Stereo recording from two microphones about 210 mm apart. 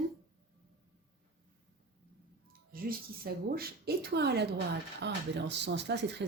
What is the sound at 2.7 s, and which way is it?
A woman's voice, 45° right (ahead or behind).